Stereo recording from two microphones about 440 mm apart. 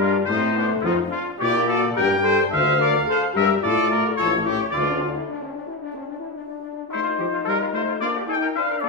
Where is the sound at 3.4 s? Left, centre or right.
Right.